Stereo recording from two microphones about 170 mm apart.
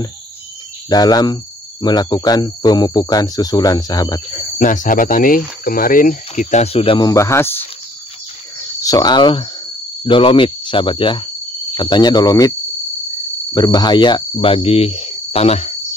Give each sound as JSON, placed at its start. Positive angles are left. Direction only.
{"t": 0.8, "sound": "cricket", "side_deg": 25}
{"t": 4.6, "sound": "speech", "side_deg": 50}
{"t": 8.8, "sound": "cricket", "side_deg": 25}
{"t": 13.5, "sound": "speech", "side_deg": 25}